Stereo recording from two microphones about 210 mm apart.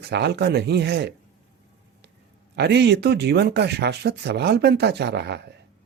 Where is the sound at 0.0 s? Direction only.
50° right (ahead or behind).